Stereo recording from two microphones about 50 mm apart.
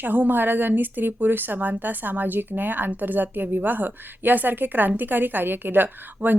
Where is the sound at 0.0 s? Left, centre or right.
Right.